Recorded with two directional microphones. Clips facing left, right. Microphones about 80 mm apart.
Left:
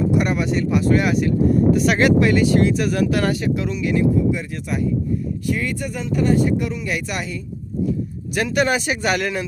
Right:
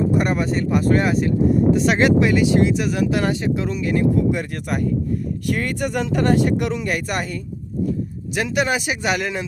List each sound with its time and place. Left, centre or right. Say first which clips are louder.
0.1 s speech: even; right
1.0 s speech: even; right
3.7 s speech: even; right
4.1 s speech: even; right
6.8 s speech: right 2 dB; right
8.4 s speech: left 2 dB; centre